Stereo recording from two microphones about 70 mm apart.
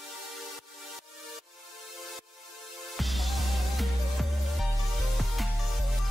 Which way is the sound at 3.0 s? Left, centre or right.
Centre.